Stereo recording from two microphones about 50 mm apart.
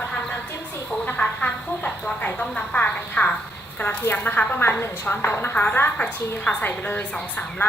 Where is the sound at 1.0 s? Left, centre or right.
Left.